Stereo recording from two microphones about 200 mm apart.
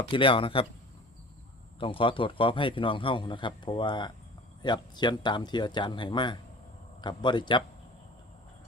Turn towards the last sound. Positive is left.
turn(degrees=25)  # may be behind; listen again after turning